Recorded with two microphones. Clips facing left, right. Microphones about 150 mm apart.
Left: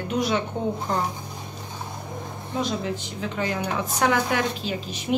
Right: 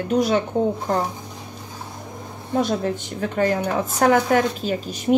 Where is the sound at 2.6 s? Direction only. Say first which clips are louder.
Right 5 dB; 55° right (ahead or behind).